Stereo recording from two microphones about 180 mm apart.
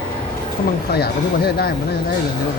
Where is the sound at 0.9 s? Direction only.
60° left (ahead or behind).